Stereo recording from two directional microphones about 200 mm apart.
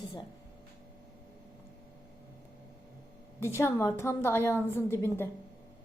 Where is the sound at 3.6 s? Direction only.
10° left (ahead or behind).